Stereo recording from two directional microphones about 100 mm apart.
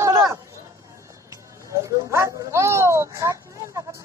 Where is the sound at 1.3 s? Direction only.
30° right (ahead or behind).